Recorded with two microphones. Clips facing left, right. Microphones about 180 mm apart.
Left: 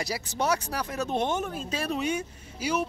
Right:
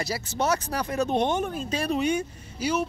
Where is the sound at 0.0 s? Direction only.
15° left (ahead or behind).